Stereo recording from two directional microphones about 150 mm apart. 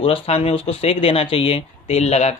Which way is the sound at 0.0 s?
40° left (ahead or behind).